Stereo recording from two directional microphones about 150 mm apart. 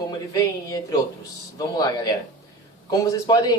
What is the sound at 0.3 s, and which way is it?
Speech, 25° left (ahead or behind).